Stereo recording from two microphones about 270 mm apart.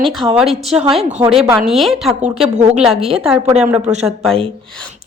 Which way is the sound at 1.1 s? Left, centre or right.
Right.